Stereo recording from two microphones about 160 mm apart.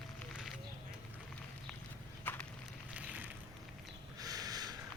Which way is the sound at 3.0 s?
10° right (ahead or behind).